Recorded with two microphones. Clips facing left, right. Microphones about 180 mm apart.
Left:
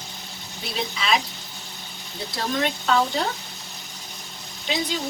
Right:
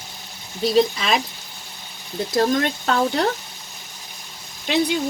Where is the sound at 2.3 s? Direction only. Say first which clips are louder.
Right 6 dB; 50° right (ahead or behind).